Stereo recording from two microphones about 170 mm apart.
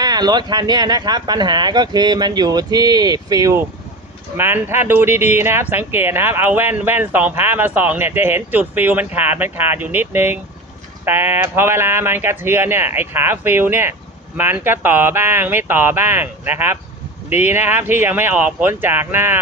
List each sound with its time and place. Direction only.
0.0 s speech: 25° right (ahead or behind)